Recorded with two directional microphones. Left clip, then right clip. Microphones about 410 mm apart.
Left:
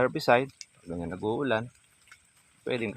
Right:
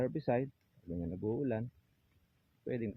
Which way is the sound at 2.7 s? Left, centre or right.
Left.